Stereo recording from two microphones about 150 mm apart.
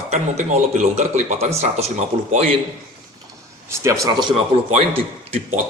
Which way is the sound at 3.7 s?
20° right (ahead or behind).